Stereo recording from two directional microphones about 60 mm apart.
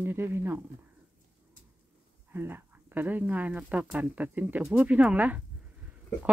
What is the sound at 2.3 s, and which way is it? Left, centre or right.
Speech, right.